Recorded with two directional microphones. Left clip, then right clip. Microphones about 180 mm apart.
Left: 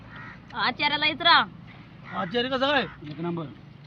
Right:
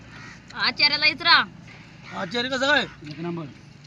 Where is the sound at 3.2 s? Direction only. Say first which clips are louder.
Even; 10° right (ahead or behind).